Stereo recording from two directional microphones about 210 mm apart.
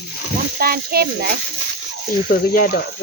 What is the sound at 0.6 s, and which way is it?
Speech, 45° right (ahead or behind).